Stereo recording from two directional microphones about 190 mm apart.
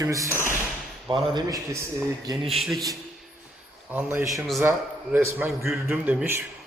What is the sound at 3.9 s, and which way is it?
Speech, 10° right (ahead or behind).